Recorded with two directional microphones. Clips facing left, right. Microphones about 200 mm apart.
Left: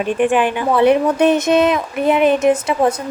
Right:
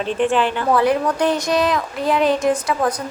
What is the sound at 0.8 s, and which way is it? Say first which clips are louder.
Speech: left 8 dB; 25° left (ahead or behind).